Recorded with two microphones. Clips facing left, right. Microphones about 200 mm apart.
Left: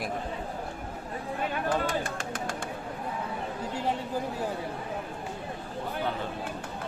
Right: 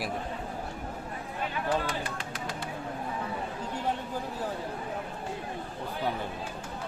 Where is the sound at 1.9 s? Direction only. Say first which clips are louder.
Left 3 dB; 50° left (ahead or behind).